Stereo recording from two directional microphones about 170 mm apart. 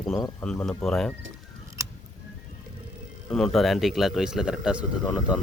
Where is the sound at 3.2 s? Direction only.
Centre (ahead or behind).